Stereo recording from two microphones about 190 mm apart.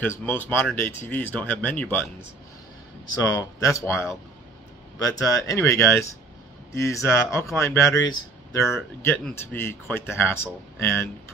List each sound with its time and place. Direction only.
0.0 s speech: 10° left (ahead or behind)
3.2 s speech: 15° left (ahead or behind)